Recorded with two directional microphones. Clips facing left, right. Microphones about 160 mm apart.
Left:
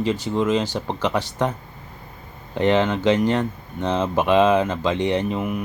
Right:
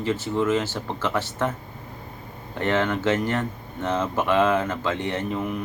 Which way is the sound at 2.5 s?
20° left (ahead or behind).